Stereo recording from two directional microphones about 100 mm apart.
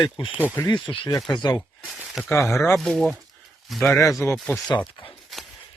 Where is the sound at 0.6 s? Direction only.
50° left (ahead or behind).